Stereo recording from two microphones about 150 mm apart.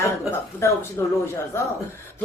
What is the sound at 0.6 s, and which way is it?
Speech, 15° left (ahead or behind).